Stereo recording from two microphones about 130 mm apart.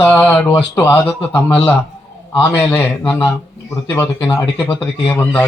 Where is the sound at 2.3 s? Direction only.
10° left (ahead or behind).